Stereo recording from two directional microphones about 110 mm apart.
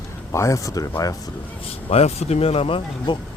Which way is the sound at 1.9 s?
70° left (ahead or behind).